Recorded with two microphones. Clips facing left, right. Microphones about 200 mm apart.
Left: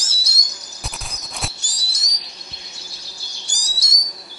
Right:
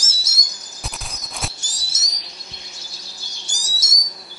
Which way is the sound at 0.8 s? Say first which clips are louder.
Even; centre (ahead or behind).